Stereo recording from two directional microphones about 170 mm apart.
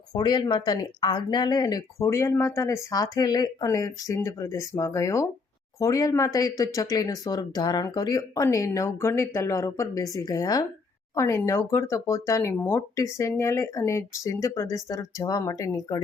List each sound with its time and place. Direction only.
0.1 s speech: 25° left (ahead or behind)